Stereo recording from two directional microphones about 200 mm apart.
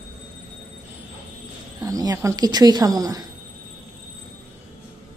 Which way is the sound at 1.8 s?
20° right (ahead or behind).